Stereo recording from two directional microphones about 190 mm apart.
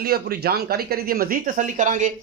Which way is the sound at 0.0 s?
55° right (ahead or behind).